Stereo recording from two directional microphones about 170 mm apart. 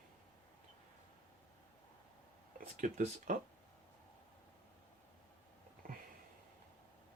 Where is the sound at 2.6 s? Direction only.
50° right (ahead or behind).